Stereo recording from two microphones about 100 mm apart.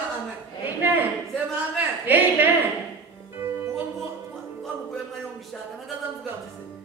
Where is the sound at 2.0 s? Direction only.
20° right (ahead or behind).